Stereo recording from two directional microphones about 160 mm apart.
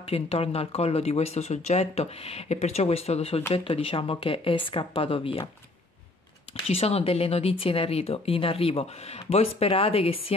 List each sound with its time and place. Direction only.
0.0 s speech: 35° left (ahead or behind)
6.7 s speech: 40° left (ahead or behind)